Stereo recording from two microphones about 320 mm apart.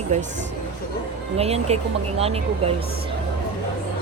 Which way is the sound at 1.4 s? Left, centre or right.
Centre.